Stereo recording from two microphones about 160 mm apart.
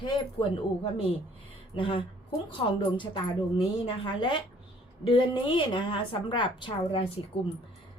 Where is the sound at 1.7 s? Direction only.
30° left (ahead or behind).